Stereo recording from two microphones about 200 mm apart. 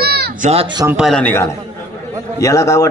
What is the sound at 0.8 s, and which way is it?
A man's voice, centre (ahead or behind).